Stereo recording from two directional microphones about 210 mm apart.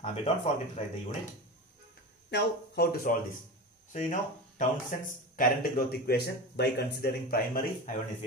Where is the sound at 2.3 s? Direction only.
50° left (ahead or behind).